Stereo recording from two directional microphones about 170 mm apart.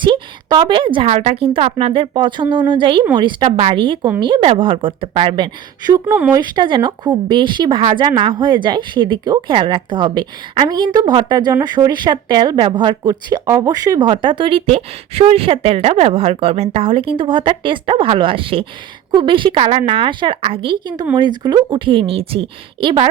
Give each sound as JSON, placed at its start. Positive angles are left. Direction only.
{"t": 0.0, "sound": "speech", "side_deg": -25}